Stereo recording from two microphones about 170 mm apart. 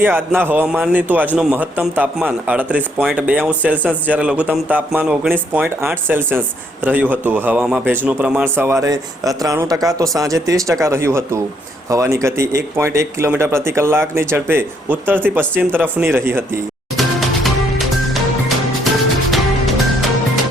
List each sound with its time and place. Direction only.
0.0 s speech: 10° right (ahead or behind)
17.0 s music: centre (ahead or behind)